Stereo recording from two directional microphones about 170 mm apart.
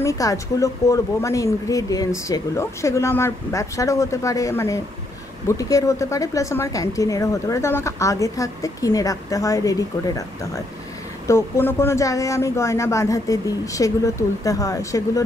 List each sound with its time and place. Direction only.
0.0 s speech: 20° left (ahead or behind)